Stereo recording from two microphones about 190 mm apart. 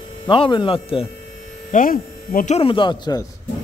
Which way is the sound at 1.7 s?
45° left (ahead or behind).